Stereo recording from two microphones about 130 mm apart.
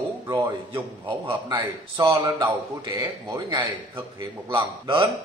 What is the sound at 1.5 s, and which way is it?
A man's voice, 35° right (ahead or behind).